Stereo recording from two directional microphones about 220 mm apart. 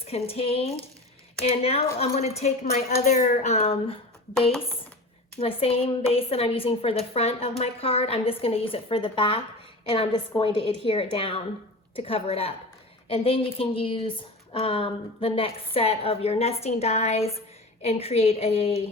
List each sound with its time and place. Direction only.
0.3 s a woman's voice: 25° left (ahead or behind)
5.4 s a woman's voice: 25° left (ahead or behind)